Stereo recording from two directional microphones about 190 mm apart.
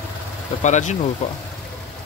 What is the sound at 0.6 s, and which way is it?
Speech, 40° left (ahead or behind).